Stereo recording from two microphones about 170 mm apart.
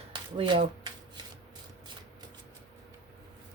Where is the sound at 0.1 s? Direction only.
30° right (ahead or behind).